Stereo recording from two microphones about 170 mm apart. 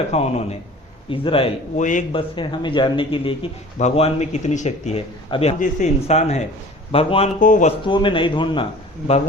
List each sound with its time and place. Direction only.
0.1 s speech: 40° left (ahead or behind)
1.7 s a man's voice: 45° left (ahead or behind)
2.1 s a man's voice: 30° left (ahead or behind)
7.3 s a man's voice: 50° left (ahead or behind)
7.9 s a man's voice: 30° left (ahead or behind)